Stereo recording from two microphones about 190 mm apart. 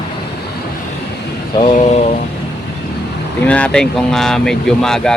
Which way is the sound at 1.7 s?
40° left (ahead or behind).